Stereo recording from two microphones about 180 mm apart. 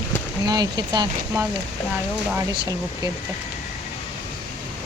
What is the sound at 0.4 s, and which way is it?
Speech, 20° right (ahead or behind).